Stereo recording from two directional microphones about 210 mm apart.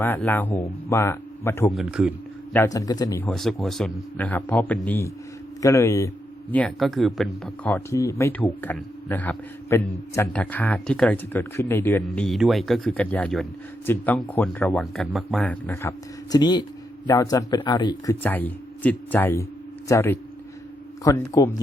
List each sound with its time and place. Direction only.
0.0 s a man's voice: 10° left (ahead or behind)
1.7 s speech: 5° right (ahead or behind)
2.5 s a man's voice: 15° left (ahead or behind)
3.2 s a man's voice: centre (ahead or behind)